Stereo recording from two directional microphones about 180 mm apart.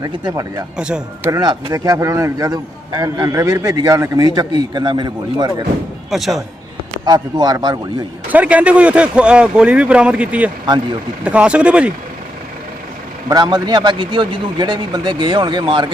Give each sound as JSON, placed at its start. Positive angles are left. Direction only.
{"t": 0.0, "sound": "speech", "side_deg": -20}
{"t": 0.8, "sound": "a man's voice", "side_deg": -5}
{"t": 1.3, "sound": "speech", "side_deg": -20}
{"t": 6.1, "sound": "a man's voice", "side_deg": 0}
{"t": 7.0, "sound": "speech", "side_deg": -20}
{"t": 8.3, "sound": "speech", "side_deg": -10}
{"t": 13.2, "sound": "speech", "side_deg": -20}